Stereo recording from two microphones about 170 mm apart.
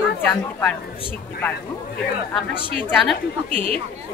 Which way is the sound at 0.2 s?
10° left (ahead or behind).